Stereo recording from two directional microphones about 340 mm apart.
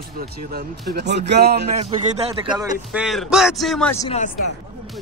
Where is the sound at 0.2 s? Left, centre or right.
Right.